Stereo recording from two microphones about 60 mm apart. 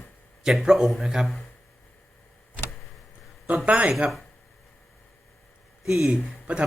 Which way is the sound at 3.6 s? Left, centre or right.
Right.